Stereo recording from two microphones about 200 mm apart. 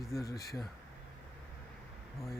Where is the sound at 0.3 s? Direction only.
15° left (ahead or behind).